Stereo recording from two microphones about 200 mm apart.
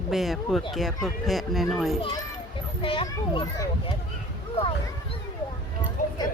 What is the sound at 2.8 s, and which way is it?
A child's voice, 25° left (ahead or behind).